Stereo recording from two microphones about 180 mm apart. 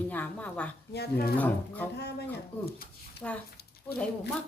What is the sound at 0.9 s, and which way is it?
Speech, 65° left (ahead or behind).